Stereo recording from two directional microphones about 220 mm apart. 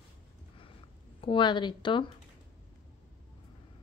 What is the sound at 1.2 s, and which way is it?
Speech, 20° left (ahead or behind).